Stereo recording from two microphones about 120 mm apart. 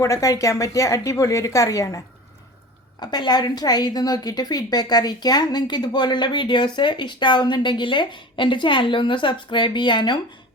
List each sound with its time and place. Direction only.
0.0 s a woman's voice: 25° left (ahead or behind)
3.0 s a woman's voice: 35° left (ahead or behind)